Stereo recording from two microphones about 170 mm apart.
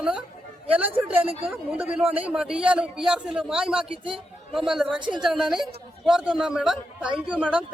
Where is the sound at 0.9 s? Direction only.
35° right (ahead or behind).